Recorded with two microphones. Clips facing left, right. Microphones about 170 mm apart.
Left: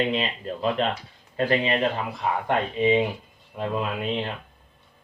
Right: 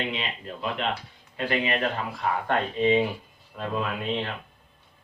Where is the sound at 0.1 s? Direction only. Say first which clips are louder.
Left 6 dB; 35° left (ahead or behind).